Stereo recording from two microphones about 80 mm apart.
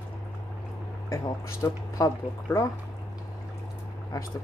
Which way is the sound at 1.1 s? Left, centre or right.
Left.